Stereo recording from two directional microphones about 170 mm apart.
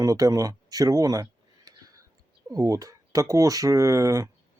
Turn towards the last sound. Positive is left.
turn(degrees=-20)  # may be behind; listen again after turning